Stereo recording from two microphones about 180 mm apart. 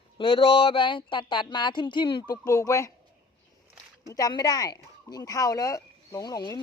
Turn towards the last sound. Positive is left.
turn(degrees=20)  # may be behind; listen again after turning